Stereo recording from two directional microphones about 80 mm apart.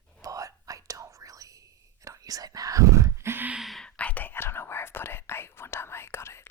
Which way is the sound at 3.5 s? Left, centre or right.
Centre.